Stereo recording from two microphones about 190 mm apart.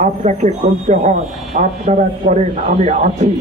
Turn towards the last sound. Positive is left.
turn(degrees=-40)  # may be behind; listen again after turning